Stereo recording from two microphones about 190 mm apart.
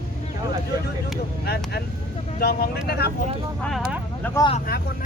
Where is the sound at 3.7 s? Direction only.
Centre (ahead or behind).